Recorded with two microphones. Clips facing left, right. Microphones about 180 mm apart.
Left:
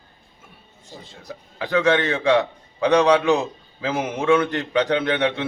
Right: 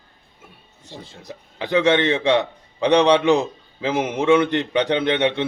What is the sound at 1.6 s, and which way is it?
A man's voice, 20° right (ahead or behind).